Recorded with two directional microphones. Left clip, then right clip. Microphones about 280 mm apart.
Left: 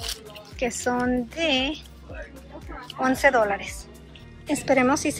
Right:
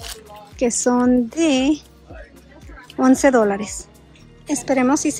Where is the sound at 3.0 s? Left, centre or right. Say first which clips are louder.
Right 5 dB; right.